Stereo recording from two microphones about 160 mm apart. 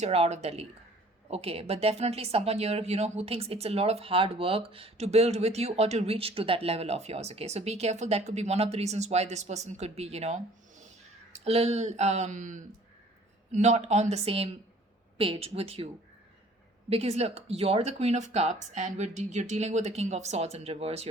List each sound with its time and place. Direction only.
0.0 s speech: 40° right (ahead or behind)
16.9 s speech: 40° right (ahead or behind)